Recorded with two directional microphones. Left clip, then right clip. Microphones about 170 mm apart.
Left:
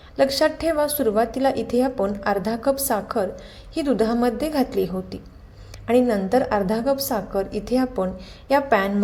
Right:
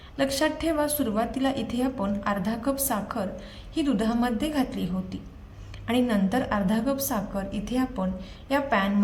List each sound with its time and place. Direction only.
0.2 s a woman's voice: 35° left (ahead or behind)